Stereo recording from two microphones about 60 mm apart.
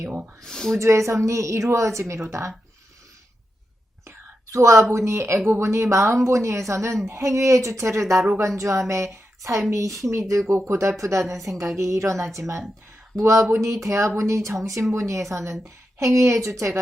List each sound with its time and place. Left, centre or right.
0.4 s speech: centre
0.8 s speech: right
4.5 s a woman's voice: right
9.1 s a sound: right
9.7 s speech: right